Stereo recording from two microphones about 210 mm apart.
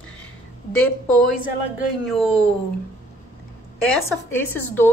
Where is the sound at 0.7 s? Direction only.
5° left (ahead or behind).